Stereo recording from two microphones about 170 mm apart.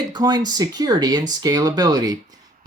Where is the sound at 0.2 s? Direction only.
25° right (ahead or behind).